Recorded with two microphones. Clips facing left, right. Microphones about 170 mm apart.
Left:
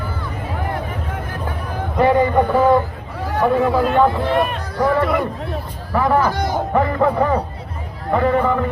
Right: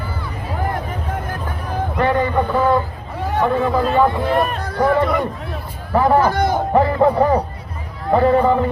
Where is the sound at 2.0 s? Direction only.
10° left (ahead or behind).